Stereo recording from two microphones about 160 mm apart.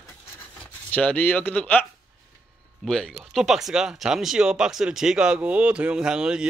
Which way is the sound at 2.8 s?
Centre (ahead or behind).